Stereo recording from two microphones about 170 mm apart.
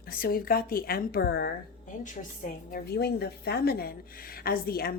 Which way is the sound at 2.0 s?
50° left (ahead or behind).